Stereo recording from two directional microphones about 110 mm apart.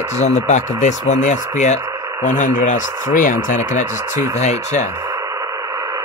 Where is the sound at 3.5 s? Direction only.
90° left.